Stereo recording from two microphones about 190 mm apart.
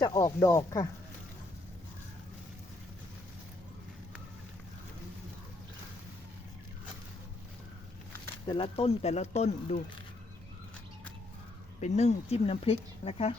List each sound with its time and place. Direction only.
0.0 s speech: 20° left (ahead or behind)
8.4 s speech: 30° left (ahead or behind)
11.8 s speech: 35° left (ahead or behind)